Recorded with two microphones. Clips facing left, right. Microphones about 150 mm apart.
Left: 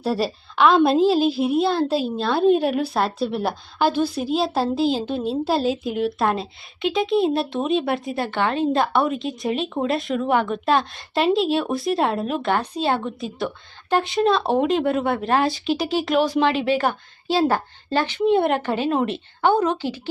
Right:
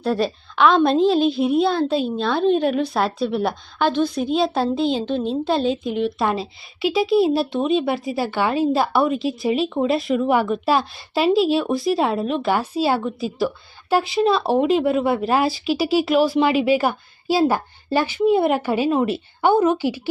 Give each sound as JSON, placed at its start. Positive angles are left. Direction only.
{"t": 0.0, "sound": "a woman's voice", "side_deg": 5}